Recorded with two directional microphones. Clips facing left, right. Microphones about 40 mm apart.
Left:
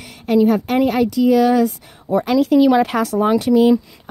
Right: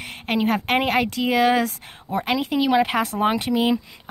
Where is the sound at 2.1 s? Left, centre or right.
Right.